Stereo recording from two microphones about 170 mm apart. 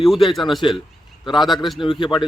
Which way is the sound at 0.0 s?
Centre (ahead or behind).